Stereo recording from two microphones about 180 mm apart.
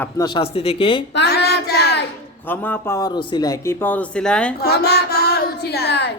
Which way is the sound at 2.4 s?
10° left (ahead or behind).